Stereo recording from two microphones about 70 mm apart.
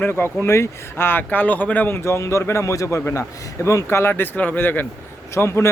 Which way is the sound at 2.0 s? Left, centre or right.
Left.